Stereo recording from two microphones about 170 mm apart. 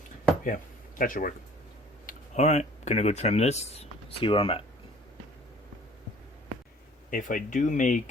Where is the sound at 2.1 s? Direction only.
40° left (ahead or behind).